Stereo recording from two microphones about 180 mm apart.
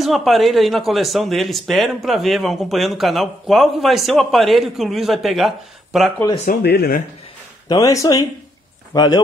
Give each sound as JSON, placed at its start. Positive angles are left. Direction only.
{"t": 0.0, "sound": "speech", "side_deg": 0}
{"t": 6.6, "sound": "speech", "side_deg": 60}
{"t": 7.6, "sound": "speech", "side_deg": 20}